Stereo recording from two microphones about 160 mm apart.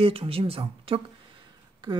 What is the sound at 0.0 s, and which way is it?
A woman's voice, 35° right (ahead or behind).